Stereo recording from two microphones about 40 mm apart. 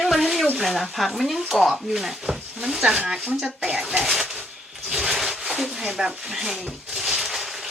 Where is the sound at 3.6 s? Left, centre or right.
Right.